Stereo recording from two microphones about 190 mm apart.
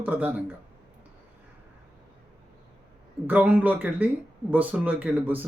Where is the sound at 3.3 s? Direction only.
10° right (ahead or behind).